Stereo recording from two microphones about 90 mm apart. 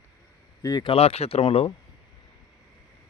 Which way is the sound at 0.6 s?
45° left (ahead or behind).